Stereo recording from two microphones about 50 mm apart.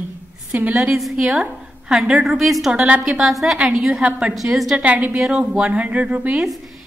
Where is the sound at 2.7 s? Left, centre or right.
Right.